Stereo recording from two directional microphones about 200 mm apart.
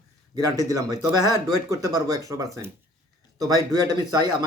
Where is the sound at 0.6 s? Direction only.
15° right (ahead or behind).